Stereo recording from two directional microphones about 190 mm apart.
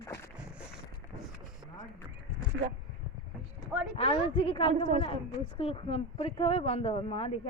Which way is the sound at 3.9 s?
30° left (ahead or behind).